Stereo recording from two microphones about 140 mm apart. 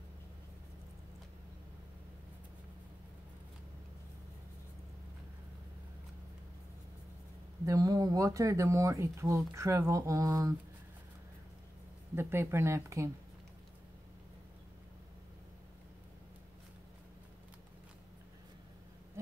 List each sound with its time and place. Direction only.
7.6 s speech: 25° right (ahead or behind)
12.2 s speech: 15° right (ahead or behind)